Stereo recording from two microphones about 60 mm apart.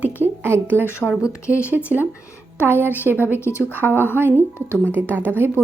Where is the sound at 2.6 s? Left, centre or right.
Left.